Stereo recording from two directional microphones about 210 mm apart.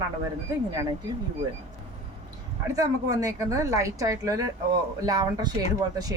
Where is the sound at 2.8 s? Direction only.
15° right (ahead or behind).